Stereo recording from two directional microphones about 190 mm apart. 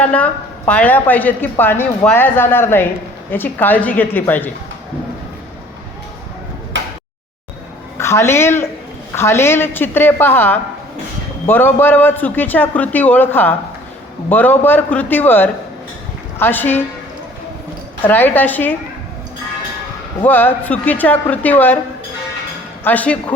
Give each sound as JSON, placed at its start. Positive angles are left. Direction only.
{"t": 0.0, "sound": "a woman's voice", "side_deg": 5}
{"t": 6.7, "sound": "a sound", "side_deg": -75}
{"t": 7.9, "sound": "a woman's voice", "side_deg": 15}
{"t": 18.1, "sound": "a woman's voice", "side_deg": 10}
{"t": 20.2, "sound": "a woman's voice", "side_deg": 10}
{"t": 22.8, "sound": "a woman's voice", "side_deg": 10}